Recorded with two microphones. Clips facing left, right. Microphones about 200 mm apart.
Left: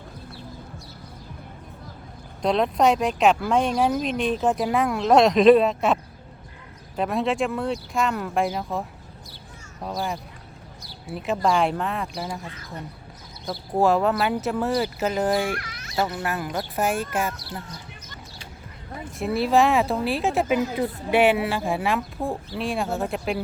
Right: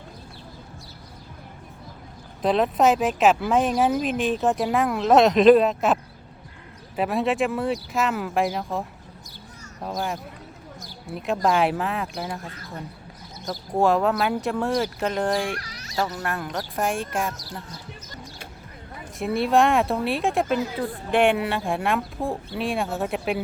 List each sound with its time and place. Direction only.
2.4 s speech: centre (ahead or behind)
9.8 s speech: centre (ahead or behind)
11.4 s speech: 5° right (ahead or behind)
13.5 s speech: centre (ahead or behind)
15.5 s fowl: 35° right (ahead or behind)
16.0 s speech: 5° left (ahead or behind)
19.2 s speech: centre (ahead or behind)